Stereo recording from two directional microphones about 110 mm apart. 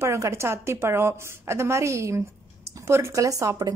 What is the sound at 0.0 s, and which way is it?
A woman's voice, 25° right (ahead or behind).